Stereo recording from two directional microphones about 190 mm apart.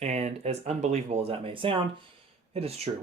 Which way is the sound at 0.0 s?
35° right (ahead or behind).